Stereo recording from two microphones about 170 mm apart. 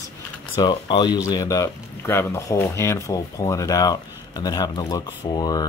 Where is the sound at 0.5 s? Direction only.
25° left (ahead or behind).